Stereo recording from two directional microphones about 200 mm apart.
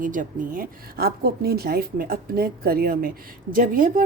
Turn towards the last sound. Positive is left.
turn(degrees=-45)  # may be behind; listen again after turning